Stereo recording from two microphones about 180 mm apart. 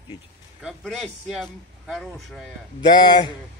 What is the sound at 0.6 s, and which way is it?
Speech, centre (ahead or behind).